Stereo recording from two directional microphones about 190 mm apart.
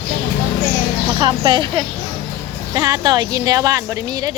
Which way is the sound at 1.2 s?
25° right (ahead or behind).